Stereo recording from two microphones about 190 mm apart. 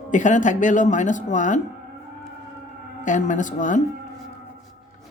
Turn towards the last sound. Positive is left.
turn(degrees=40)  # may be behind; listen again after turning